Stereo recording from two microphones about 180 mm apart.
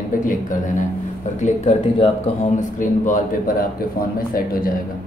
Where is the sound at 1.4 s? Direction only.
35° left (ahead or behind).